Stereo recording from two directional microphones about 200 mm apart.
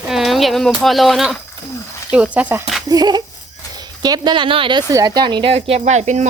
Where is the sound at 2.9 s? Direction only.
20° right (ahead or behind).